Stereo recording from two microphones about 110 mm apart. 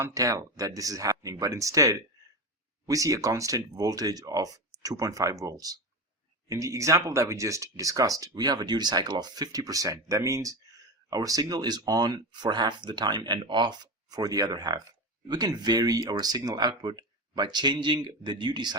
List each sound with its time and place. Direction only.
0.0 s speech: 30° right (ahead or behind)